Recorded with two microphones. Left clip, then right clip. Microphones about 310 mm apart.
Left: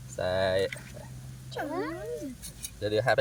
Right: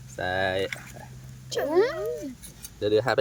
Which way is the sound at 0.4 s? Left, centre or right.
Centre.